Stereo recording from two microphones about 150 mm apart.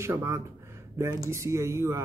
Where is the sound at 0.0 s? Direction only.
20° right (ahead or behind).